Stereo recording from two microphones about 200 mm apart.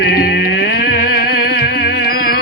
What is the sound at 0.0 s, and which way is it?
Music, 50° left (ahead or behind).